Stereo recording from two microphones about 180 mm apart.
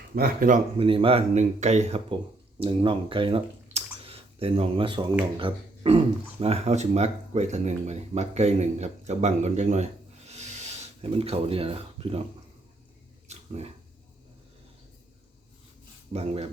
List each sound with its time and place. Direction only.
0.2 s speech: 50° right (ahead or behind)
0.8 s speech: 30° right (ahead or behind)
13.2 s dog: 35° right (ahead or behind)
16.1 s speech: 35° right (ahead or behind)